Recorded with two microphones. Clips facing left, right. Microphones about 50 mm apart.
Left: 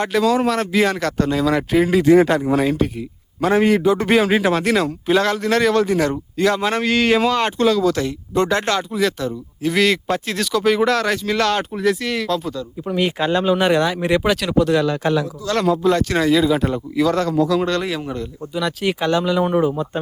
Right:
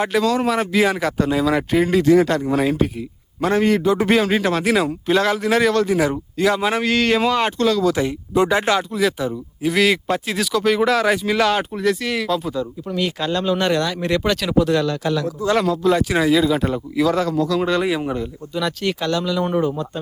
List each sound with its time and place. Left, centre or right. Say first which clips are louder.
0.0 s speech: left 1 dB; centre
2.0 s speech: left 3 dB; left
2.4 s speech: left 1 dB; centre
4.2 s speech: left 2 dB; centre
4.6 s speech: even; centre
8.3 s speech: right 1 dB; centre
12.9 s speech: left 4 dB; left
14.4 s speech: left 1 dB; centre
15.4 s speech: right 4 dB; right
15.9 s speech: right 2 dB; centre
18.5 s speech: left 1 dB; centre
18.9 s speech: left 5 dB; left